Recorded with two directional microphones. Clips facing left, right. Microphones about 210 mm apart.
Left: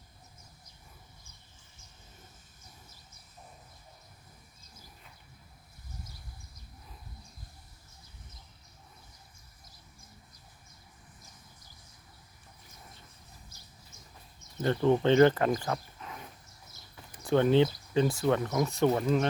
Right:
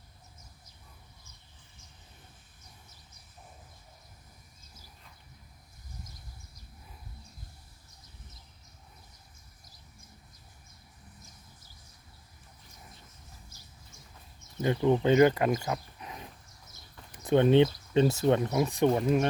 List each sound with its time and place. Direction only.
14.6 s speech: 10° right (ahead or behind)
15.6 s a sound: 15° right (ahead or behind)
17.2 s speech: 20° right (ahead or behind)